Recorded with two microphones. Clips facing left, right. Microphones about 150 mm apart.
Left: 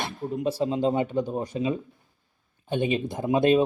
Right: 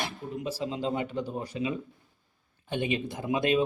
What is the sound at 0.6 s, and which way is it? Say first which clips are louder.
Speech: left 7 dB; 40° left (ahead or behind).